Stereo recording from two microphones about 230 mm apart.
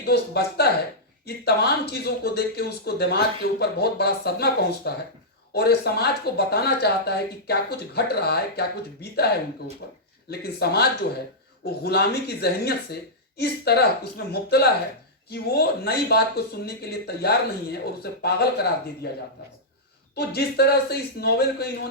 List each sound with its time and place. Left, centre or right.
0.0 s speech: left